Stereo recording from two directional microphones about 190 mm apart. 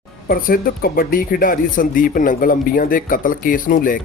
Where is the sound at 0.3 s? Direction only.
50° left (ahead or behind).